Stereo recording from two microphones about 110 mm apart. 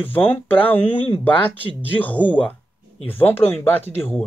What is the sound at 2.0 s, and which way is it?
Speech, 15° left (ahead or behind).